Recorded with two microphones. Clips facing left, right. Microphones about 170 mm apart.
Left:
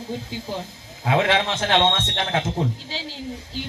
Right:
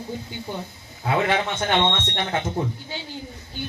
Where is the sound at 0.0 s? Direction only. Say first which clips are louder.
Left 2 dB; 90° left.